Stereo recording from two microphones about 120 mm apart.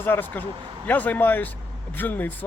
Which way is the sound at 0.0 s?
15° left (ahead or behind).